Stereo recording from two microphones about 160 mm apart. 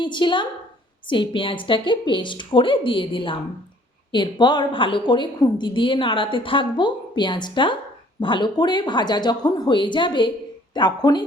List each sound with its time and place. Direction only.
0.0 s a woman's voice: 30° left (ahead or behind)